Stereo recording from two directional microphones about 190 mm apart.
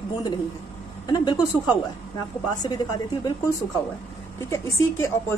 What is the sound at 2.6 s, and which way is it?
Speech, 20° left (ahead or behind).